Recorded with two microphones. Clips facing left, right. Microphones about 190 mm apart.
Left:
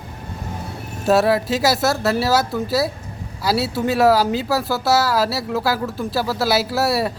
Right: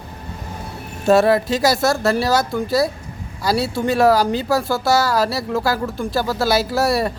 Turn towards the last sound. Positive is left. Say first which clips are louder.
# right 1 dB
turn(degrees=5)  # may be behind; listen again after turning